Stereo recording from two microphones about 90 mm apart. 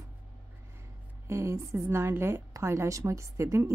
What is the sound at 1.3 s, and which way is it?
A woman's voice, 30° right (ahead or behind).